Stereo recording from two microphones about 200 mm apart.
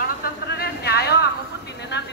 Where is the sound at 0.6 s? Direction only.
55° left (ahead or behind).